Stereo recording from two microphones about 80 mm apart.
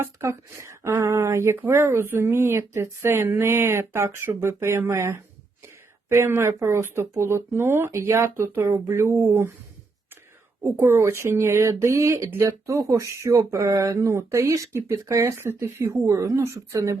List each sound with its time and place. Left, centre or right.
0.0 s speech: right
10.6 s speech: right